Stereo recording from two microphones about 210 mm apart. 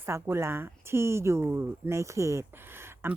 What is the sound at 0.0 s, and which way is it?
Speech, 10° right (ahead or behind).